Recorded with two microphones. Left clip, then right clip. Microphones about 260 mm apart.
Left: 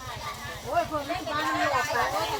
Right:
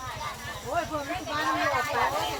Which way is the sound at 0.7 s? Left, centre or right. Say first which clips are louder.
Left 3 dB; centre.